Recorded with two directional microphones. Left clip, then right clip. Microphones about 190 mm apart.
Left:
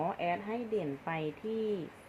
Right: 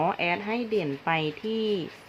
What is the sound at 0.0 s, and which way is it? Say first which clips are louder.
A woman's voice: right 8 dB; 40° right (ahead or behind).